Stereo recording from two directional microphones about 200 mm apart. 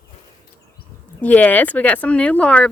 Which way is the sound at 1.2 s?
10° left (ahead or behind).